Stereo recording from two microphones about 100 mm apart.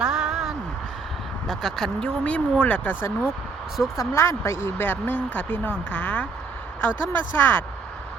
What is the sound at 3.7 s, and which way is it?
Speech, 5° right (ahead or behind).